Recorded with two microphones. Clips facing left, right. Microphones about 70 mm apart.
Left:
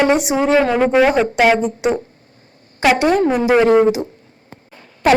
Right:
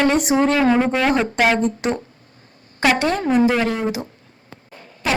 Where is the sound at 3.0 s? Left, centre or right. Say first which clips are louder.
Left 3 dB; left.